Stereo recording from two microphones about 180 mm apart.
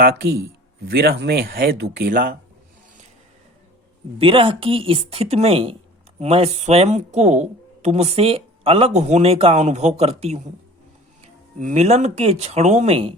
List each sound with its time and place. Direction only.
0.0 s speech: 60° right (ahead or behind)
4.2 s speech: 30° right (ahead or behind)
11.6 s speech: 40° right (ahead or behind)